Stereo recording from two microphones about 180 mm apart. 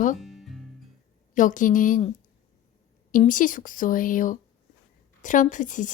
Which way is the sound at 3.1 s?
50° left (ahead or behind).